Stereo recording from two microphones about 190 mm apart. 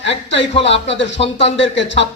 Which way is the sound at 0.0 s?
70° left (ahead or behind).